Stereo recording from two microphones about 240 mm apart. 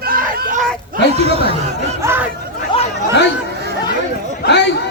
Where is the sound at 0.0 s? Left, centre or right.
Right.